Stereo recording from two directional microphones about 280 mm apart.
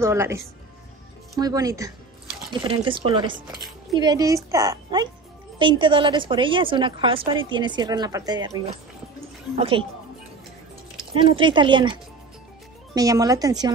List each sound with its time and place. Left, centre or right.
0.0 s a woman's voice: centre
11.1 s a woman's voice: centre